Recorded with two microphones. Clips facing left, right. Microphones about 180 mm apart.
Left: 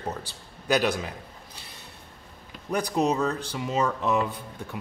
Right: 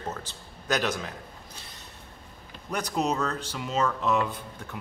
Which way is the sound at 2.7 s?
15° left (ahead or behind).